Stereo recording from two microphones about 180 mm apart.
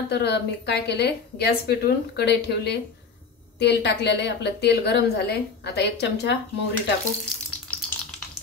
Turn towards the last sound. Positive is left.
turn(degrees=5)  # may be behind; listen again after turning